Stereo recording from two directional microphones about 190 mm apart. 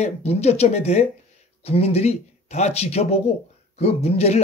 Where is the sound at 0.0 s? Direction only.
35° left (ahead or behind).